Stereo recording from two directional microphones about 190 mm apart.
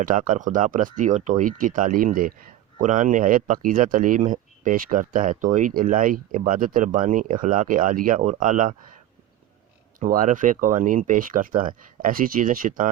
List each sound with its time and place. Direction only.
0.0 s speech: 45° right (ahead or behind)
10.0 s speech: 45° right (ahead or behind)